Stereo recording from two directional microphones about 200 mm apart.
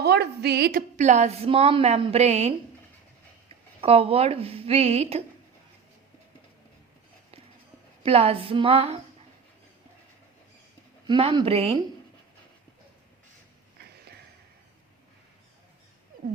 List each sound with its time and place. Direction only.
0.0 s a woman's voice: 55° right (ahead or behind); by 2.6 s 35° right (ahead or behind)
3.8 s speech: 30° right (ahead or behind)
8.0 s speech: 30° right (ahead or behind)
11.0 s speech: 25° right (ahead or behind)